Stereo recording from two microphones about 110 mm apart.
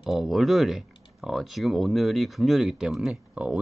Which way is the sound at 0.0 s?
Centre (ahead or behind).